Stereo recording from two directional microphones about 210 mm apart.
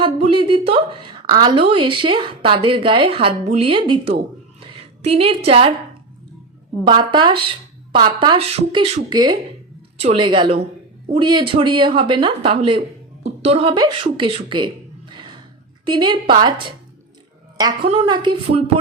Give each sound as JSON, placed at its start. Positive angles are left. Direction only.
{"t": 0.0, "sound": "a woman's voice", "side_deg": -25}
{"t": 4.6, "sound": "a sound", "side_deg": -25}
{"t": 5.5, "sound": "a woman's voice", "side_deg": -25}
{"t": 6.8, "sound": "a woman's voice", "side_deg": -20}
{"t": 15.9, "sound": "a woman's voice", "side_deg": -20}